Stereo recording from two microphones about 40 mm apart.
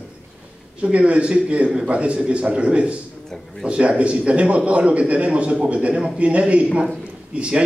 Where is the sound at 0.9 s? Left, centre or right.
Right.